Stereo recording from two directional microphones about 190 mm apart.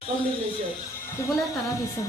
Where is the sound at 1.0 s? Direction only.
15° left (ahead or behind).